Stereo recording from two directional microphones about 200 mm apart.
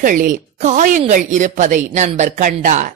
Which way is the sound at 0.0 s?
40° right (ahead or behind).